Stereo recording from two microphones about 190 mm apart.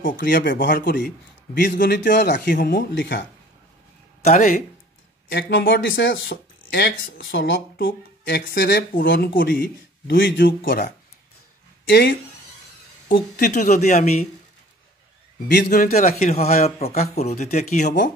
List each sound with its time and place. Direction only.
0.2 s speech: 60° left (ahead or behind)
1.5 s speech: 60° left (ahead or behind)
2.4 s speech: 50° left (ahead or behind)
4.2 s speech: 40° left (ahead or behind)
5.3 s speech: 55° left (ahead or behind); by 7.5 s 75° left (ahead or behind)
7.7 s speech: 55° left (ahead or behind)
9.3 s speech: 50° left (ahead or behind)
10.0 s speech: 75° left (ahead or behind)
10.4 s speech: 50° left (ahead or behind)
11.9 s speech: 65° left (ahead or behind)
13.1 s speech: 45° left (ahead or behind)
15.4 s speech: 55° left (ahead or behind)
16.2 s speech: 35° left (ahead or behind)